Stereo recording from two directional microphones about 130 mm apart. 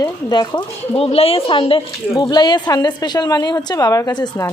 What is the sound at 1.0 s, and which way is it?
Speech, 50° left (ahead or behind).